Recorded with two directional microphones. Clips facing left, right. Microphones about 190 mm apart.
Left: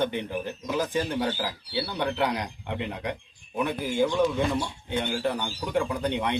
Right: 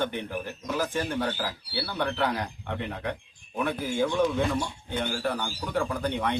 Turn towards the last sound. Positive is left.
turn(degrees=20)  # may be behind; listen again after turning